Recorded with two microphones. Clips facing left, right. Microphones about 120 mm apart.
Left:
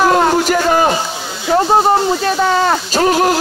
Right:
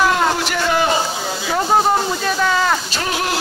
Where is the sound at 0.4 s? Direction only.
45° left (ahead or behind).